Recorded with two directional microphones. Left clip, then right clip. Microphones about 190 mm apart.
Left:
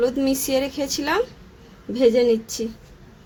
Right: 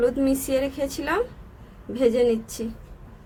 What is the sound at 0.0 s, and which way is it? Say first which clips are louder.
A woman's voice: left 1 dB; 30° left (ahead or behind).